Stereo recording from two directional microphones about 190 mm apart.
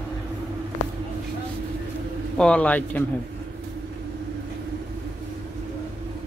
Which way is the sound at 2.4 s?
5° left (ahead or behind).